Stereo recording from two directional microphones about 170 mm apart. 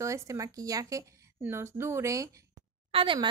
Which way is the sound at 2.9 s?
30° right (ahead or behind).